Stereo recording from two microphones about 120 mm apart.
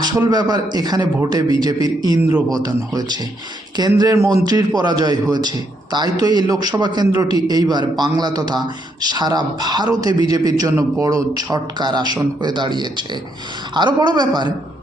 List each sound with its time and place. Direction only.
0.0 s a man's voice: 35° right (ahead or behind)